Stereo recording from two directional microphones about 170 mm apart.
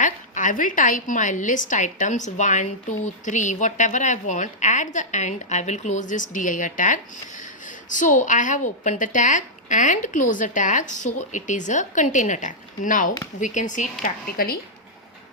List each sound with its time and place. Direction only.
0.0 s a woman's voice: 50° left (ahead or behind)